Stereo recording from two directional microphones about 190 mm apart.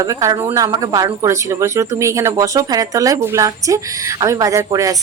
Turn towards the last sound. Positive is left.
turn(degrees=-20)  # may be behind; listen again after turning